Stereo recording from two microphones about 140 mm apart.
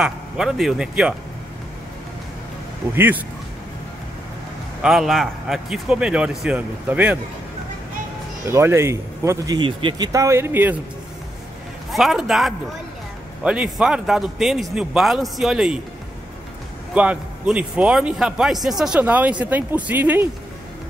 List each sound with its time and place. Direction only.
0.0 s speech: 5° right (ahead or behind)
2.9 s a man's voice: 15° right (ahead or behind)
4.8 s speech: centre (ahead or behind)
8.5 s speech: 20° right (ahead or behind)
9.6 s speech: 35° right (ahead or behind); by 10.8 s 15° right (ahead or behind)
11.9 s speech: centre (ahead or behind)
16.9 s a man's voice: 10° right (ahead or behind)